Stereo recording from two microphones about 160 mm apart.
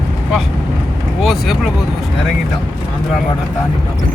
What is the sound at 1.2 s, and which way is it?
Vehicle, centre (ahead or behind).